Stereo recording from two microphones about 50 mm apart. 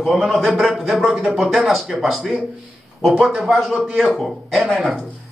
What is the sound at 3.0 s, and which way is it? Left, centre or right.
Speech, centre.